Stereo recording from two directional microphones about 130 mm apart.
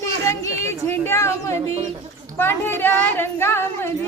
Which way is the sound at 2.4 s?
15° left (ahead or behind).